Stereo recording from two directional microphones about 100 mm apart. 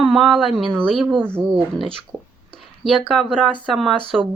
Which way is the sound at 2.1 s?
15° right (ahead or behind).